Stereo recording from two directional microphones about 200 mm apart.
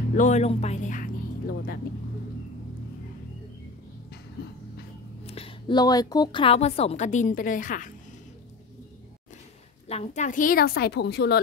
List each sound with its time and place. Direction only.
0.1 s speech: 35° left (ahead or behind)
5.2 s speech: 30° left (ahead or behind)
9.8 s a woman's voice: 35° left (ahead or behind); by 11.3 s 55° left (ahead or behind)